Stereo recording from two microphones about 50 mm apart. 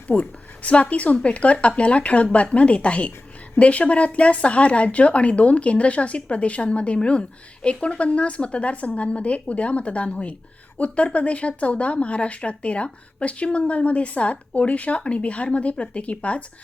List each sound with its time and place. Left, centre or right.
0.1 s speech: left